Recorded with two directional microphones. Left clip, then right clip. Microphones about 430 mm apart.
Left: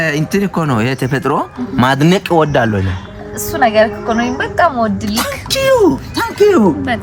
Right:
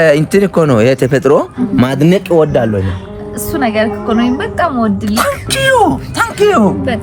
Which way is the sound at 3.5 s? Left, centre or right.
Left.